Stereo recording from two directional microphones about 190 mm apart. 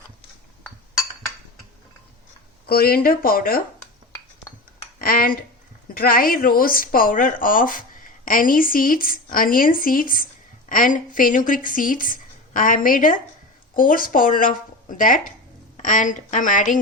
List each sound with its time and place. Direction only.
2.6 s speech: 55° left (ahead or behind)
4.9 s speech: 50° left (ahead or behind)